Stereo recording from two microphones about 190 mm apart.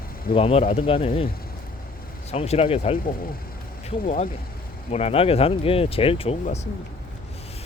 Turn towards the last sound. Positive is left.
turn(degrees=35)  # may be behind; listen again after turning